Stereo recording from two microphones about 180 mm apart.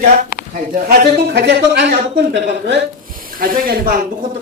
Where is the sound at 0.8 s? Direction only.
60° right (ahead or behind).